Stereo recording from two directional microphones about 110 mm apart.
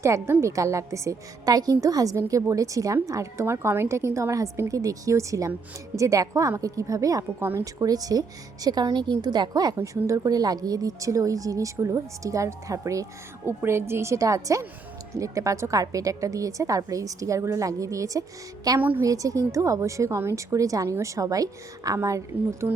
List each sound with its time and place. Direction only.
0.0 s a woman's voice: 25° right (ahead or behind)
18.8 s a woman's voice: 15° right (ahead or behind)
19.0 s a woman's voice: 30° right (ahead or behind)